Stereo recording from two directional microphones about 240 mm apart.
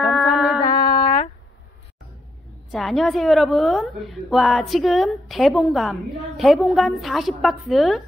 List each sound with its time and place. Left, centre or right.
0.0 s humming: centre
0.8 s a sound: left
2.7 s a woman's voice: centre